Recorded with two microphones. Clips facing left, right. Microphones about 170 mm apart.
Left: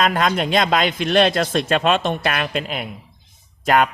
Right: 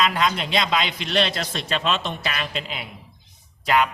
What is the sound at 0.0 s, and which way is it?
A man's voice, 50° left (ahead or behind).